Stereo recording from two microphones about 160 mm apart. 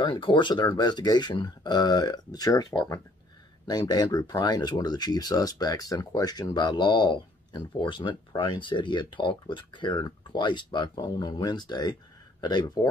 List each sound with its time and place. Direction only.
0.0 s speech: 30° left (ahead or behind)